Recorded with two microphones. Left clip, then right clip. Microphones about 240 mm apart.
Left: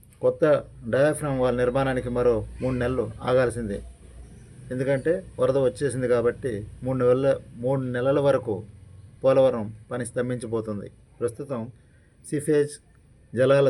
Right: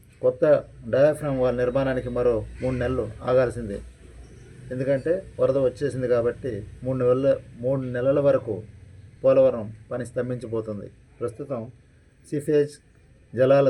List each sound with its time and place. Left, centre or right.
0.2 s speech: centre